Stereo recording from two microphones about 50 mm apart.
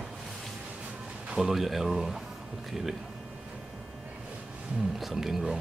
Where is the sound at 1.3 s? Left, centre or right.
Centre.